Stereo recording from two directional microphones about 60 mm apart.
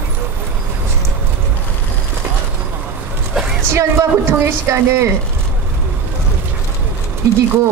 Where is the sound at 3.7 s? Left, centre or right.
Right.